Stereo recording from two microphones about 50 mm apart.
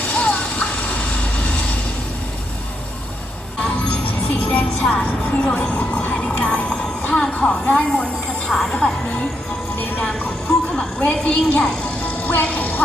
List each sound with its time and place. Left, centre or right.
0.1 s vehicle: centre
3.6 s music: left
5.3 s a sound: left
7.3 s a woman's voice: left
8.4 s music: centre
11.0 s a woman's voice: left
12.0 s music: left